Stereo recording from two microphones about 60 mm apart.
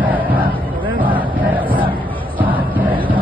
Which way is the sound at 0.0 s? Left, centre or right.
Right.